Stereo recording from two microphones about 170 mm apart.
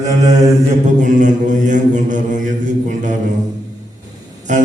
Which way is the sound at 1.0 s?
50° right (ahead or behind).